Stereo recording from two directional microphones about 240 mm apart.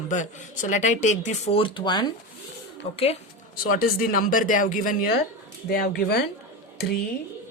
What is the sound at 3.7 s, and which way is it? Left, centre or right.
Speech, left.